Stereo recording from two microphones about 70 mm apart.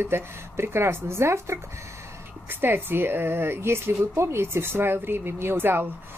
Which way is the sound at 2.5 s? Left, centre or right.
Right.